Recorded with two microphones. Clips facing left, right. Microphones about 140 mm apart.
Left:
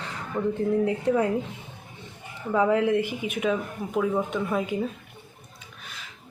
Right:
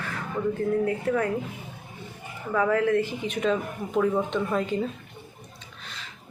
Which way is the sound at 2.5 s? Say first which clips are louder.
Left 1 dB; 20° left (ahead or behind).